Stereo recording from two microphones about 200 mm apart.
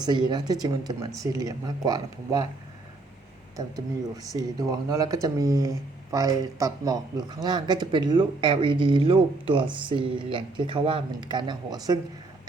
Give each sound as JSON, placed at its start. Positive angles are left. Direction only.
{"t": 0.0, "sound": "speech", "side_deg": -20}
{"t": 4.4, "sound": "speech", "side_deg": -20}